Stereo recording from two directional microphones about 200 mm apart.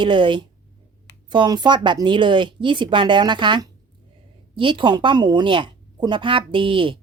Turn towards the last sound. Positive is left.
turn(degrees=-25)  # may be behind; listen again after turning